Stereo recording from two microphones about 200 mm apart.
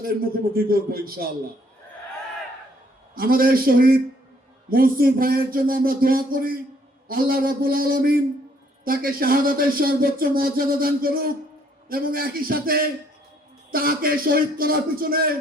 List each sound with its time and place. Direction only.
0.0 s speech: 45° right (ahead or behind)
3.2 s speech: 45° right (ahead or behind)